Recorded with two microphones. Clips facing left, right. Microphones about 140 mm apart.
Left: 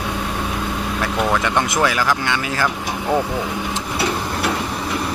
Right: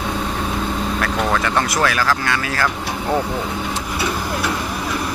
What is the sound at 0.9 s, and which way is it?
Speech, 10° left (ahead or behind).